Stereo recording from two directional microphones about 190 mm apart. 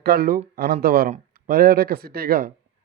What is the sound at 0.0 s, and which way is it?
A man's voice, 55° right (ahead or behind).